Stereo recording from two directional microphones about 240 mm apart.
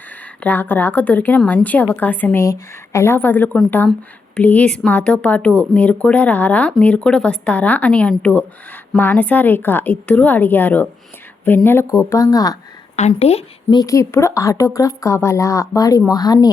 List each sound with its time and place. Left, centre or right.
0.3 s a woman's voice: centre
13.0 s a woman's voice: left